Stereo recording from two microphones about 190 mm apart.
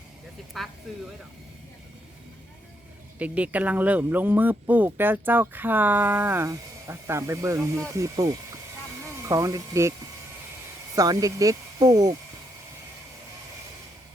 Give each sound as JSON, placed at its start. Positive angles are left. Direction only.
{"t": 0.6, "sound": "speech", "side_deg": 0}
{"t": 3.2, "sound": "speech", "side_deg": -5}
{"t": 10.9, "sound": "speech", "side_deg": -20}